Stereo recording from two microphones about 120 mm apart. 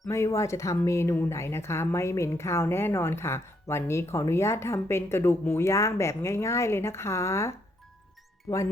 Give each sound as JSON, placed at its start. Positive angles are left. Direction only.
{"t": 0.1, "sound": "a woman's voice", "side_deg": 25}